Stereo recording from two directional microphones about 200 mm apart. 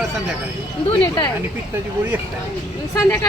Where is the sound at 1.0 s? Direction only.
20° left (ahead or behind).